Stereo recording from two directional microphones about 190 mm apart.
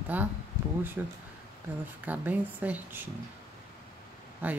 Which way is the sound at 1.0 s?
10° right (ahead or behind).